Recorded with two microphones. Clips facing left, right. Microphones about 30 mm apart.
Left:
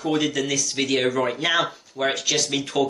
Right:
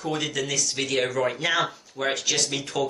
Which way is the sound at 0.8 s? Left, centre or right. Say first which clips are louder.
Left 4 dB; centre.